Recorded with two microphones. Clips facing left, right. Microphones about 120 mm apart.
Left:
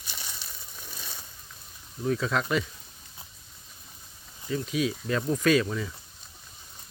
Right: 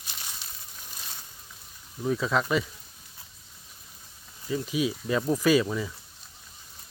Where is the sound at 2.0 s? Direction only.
5° right (ahead or behind).